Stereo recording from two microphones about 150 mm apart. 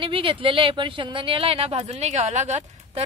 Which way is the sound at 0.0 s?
35° right (ahead or behind).